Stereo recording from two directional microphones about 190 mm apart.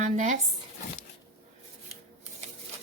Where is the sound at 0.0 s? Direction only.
40° right (ahead or behind).